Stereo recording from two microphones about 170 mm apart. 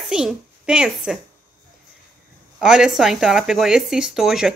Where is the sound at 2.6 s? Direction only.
5° right (ahead or behind).